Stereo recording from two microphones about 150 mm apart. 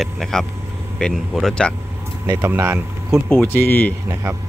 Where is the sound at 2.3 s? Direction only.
15° right (ahead or behind).